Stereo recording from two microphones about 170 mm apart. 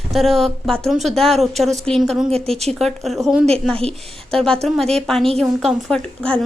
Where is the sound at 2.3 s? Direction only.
35° right (ahead or behind).